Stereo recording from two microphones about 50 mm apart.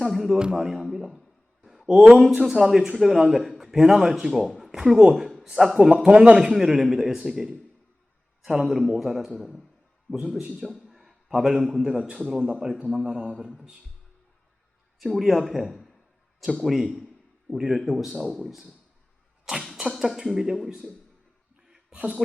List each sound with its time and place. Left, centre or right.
0.0 s music: centre
0.5 s speech: centre
1.6 s a sound: centre
2.0 s a man's voice: centre
10.8 s a sound: centre
11.7 s a man's voice: centre
14.9 s a man's voice: centre
19.7 s a man's voice: centre
21.9 s speech: right